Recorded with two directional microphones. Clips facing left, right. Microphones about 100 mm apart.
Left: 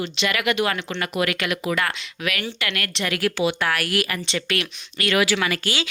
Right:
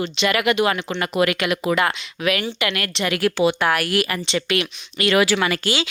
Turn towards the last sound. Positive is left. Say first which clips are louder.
# right 3 dB
turn(degrees=-25)  # may be behind; listen again after turning